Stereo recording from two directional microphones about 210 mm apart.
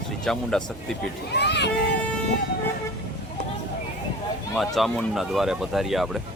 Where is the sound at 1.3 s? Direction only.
55° left (ahead or behind).